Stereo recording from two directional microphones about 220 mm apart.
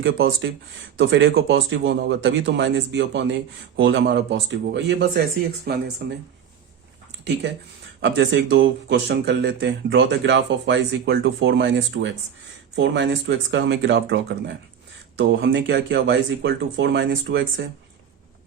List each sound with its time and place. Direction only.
0.0 s speech: 60° right (ahead or behind)
8.0 s speech: 55° right (ahead or behind)